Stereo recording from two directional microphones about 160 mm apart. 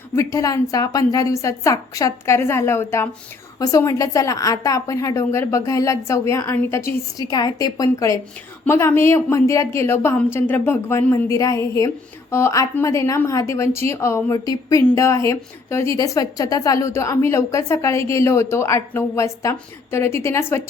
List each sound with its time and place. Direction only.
0.2 s a woman's voice: 20° left (ahead or behind)